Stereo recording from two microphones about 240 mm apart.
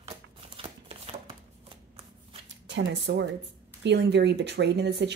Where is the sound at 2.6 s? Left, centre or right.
Right.